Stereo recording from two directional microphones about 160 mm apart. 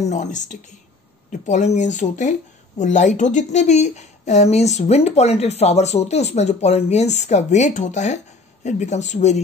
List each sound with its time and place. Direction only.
0.0 s a woman's voice: 50° left (ahead or behind)